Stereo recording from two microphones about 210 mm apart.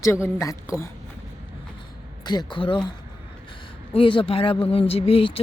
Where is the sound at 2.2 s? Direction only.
20° left (ahead or behind).